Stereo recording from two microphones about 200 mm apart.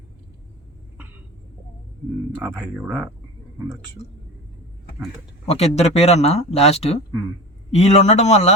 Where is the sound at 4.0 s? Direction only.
30° left (ahead or behind).